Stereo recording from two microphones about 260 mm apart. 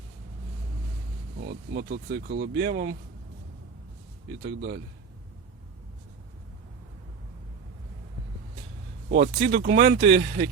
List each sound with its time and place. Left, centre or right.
1.4 s speech: right
4.4 s speech: right
9.0 s speech: right